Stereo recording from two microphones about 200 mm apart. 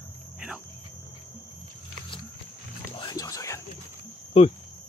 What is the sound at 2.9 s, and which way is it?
Whispering, 20° left (ahead or behind).